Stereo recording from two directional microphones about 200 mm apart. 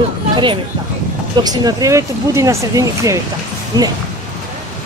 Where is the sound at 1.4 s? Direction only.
20° right (ahead or behind).